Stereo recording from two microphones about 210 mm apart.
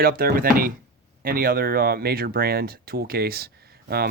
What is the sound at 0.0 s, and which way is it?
Speech, 45° right (ahead or behind).